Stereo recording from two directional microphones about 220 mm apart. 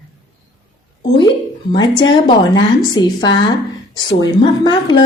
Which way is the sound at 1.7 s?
20° left (ahead or behind).